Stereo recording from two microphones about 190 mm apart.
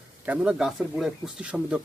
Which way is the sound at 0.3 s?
5° right (ahead or behind).